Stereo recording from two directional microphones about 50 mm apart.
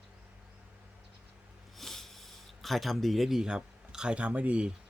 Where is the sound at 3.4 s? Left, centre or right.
Centre.